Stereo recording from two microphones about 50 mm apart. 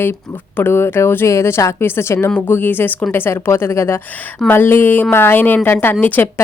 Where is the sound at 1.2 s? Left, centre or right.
Left.